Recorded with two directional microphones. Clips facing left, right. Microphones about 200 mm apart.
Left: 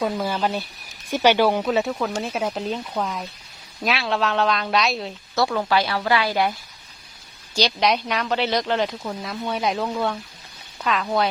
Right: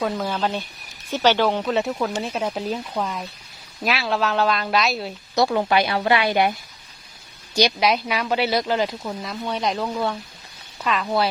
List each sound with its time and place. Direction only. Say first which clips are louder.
0.0 s speech: even; 5° left (ahead or behind)
5.3 s a woman's voice: right 2 dB; 20° right (ahead or behind)
7.8 s speech: even; 5° right (ahead or behind)